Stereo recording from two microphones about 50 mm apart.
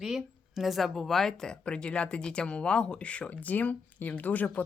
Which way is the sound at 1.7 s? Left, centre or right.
Left.